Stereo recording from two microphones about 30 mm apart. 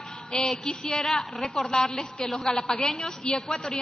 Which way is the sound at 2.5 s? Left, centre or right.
Left.